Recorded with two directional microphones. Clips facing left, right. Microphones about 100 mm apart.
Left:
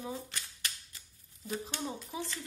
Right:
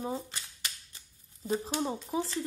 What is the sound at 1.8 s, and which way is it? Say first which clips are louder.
Speech: right 6 dB; 35° right (ahead or behind).